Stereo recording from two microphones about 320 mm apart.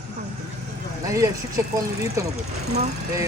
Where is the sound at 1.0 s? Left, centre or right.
Centre.